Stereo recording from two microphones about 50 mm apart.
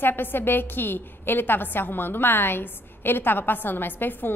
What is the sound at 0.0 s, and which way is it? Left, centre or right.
A woman's voice, left.